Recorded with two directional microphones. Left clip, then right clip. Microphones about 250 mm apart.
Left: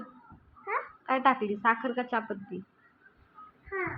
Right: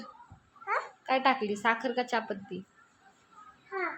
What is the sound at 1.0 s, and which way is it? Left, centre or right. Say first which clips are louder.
A woman's voice: left 1 dB; centre.